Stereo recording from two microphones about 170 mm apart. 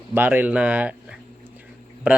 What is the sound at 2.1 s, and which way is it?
Speech, 10° right (ahead or behind).